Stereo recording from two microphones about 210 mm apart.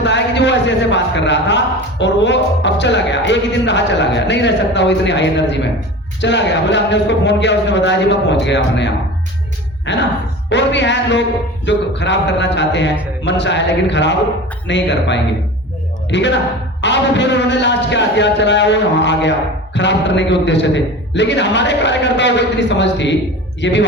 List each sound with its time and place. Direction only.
0.0 s a man's voice: 55° left (ahead or behind)